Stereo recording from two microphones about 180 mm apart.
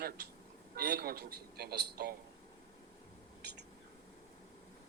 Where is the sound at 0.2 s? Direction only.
65° right (ahead or behind).